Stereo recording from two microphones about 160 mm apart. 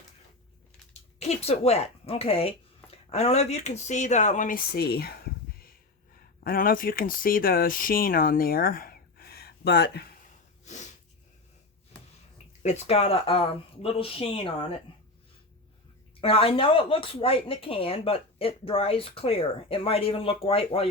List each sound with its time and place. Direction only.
1.3 s speech: 40° left (ahead or behind); by 5.3 s 75° left (ahead or behind)
6.4 s speech: 65° left (ahead or behind); by 10.1 s 90° left
10.6 s snort: 50° left (ahead or behind)
12.6 s speech: 40° left (ahead or behind)
16.2 s speech: 35° left (ahead or behind)